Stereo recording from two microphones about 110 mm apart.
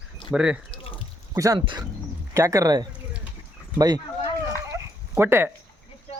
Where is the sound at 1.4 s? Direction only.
30° right (ahead or behind).